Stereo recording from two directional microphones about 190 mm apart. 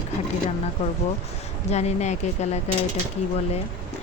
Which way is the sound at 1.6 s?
35° left (ahead or behind).